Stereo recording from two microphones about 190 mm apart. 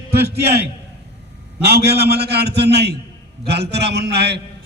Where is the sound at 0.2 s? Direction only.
55° right (ahead or behind).